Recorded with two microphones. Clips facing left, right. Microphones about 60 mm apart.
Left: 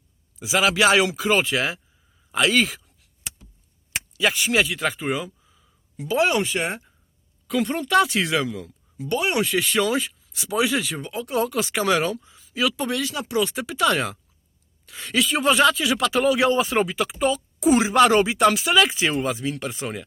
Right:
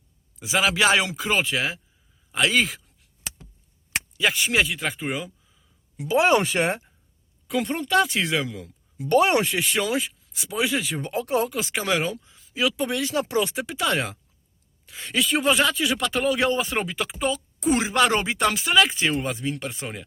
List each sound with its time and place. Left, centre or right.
0.3 s a man's voice: centre
4.2 s speech: centre
6.2 s speech: right
7.6 s speech: centre
9.0 s speech: right
9.4 s speech: right
10.3 s speech: centre
11.0 s speech: right
11.5 s speech: centre
13.0 s speech: right
13.8 s speech: centre